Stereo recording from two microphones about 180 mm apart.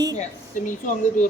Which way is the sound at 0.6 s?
45° left (ahead or behind).